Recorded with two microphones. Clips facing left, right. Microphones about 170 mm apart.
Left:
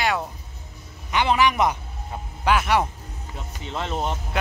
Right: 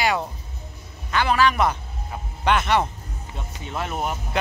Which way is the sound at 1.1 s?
20° left (ahead or behind).